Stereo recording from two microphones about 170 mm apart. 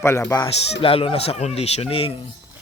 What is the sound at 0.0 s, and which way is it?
Speech, 15° left (ahead or behind).